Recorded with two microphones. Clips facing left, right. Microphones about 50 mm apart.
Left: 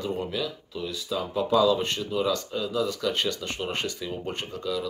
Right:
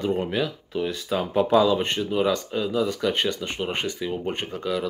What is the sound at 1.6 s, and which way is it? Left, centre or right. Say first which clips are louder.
Speech: right 1 dB; right.